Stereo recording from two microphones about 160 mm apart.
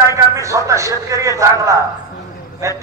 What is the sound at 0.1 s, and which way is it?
A man's voice, 20° right (ahead or behind).